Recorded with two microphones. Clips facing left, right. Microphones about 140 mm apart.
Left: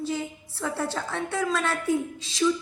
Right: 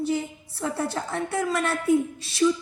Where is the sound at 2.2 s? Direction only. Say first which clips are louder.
Right 1 dB; 90° left.